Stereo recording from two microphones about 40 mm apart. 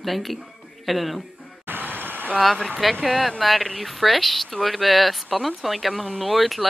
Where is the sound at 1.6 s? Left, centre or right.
Right.